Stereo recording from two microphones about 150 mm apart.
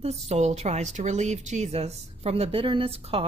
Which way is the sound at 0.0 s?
45° right (ahead or behind).